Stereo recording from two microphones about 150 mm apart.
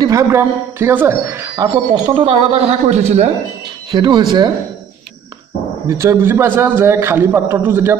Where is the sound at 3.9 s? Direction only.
30° right (ahead or behind).